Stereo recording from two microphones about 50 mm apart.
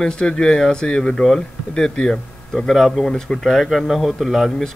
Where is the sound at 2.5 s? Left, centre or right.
Centre.